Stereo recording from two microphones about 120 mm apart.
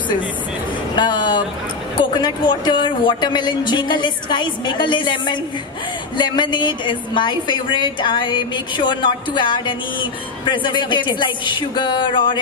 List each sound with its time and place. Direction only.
0.9 s a woman's voice: 40° left (ahead or behind)